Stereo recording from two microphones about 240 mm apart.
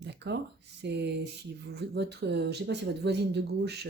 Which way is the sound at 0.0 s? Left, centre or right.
Right.